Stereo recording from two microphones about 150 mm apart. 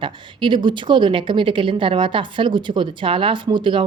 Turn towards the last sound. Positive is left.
turn(degrees=-35)  # may be behind; listen again after turning